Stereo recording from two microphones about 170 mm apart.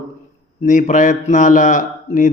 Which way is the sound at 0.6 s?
50° left (ahead or behind).